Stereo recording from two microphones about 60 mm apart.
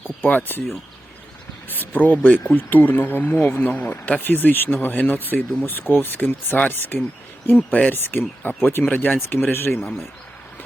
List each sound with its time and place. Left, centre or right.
0.2 s speech: left
1.7 s a sound: left
2.2 s speech: left